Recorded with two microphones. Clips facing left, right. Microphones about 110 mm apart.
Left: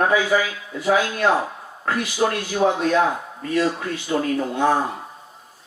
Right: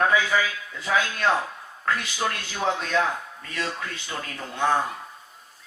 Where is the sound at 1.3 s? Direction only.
20° left (ahead or behind).